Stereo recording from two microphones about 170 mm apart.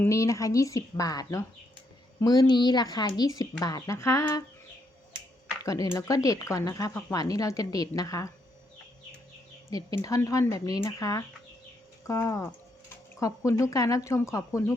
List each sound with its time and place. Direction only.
0.0 s speech: 20° left (ahead or behind)
5.6 s speech: 20° left (ahead or behind)
9.6 s speech: 20° left (ahead or behind)